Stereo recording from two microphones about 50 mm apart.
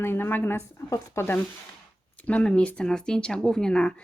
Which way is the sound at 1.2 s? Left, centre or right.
Left.